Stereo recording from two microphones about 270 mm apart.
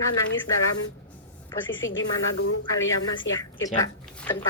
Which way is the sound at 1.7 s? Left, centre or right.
Left.